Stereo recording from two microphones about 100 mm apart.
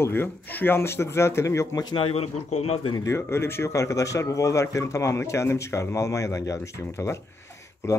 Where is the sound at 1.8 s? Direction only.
60° left (ahead or behind); by 2.9 s 90° left.